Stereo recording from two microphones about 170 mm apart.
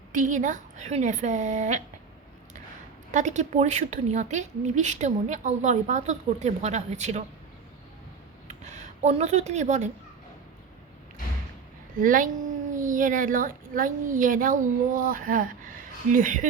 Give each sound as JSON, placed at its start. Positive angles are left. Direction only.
{"t": 0.1, "sound": "a woman's voice", "side_deg": -50}
{"t": 3.1, "sound": "a woman's voice", "side_deg": -45}
{"t": 8.4, "sound": "speech", "side_deg": -40}
{"t": 12.0, "sound": "a woman's voice", "side_deg": -50}